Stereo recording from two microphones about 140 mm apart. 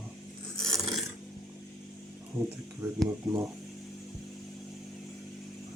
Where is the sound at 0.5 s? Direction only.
5° left (ahead or behind).